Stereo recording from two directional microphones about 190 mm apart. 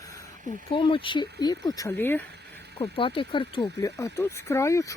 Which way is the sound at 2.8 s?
25° left (ahead or behind).